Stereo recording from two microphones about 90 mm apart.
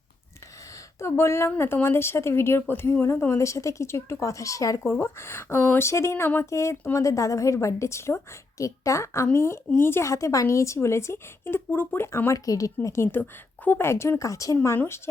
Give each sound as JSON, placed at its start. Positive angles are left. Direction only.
{"t": 0.9, "sound": "a woman's voice", "side_deg": 30}
{"t": 12.5, "sound": "a woman's voice", "side_deg": 40}